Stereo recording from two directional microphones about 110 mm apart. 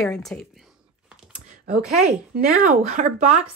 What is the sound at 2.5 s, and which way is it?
Speech, 90° right.